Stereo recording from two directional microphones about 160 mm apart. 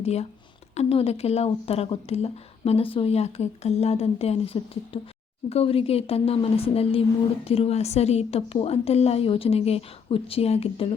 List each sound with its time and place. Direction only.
0.0 s speech: 40° left (ahead or behind)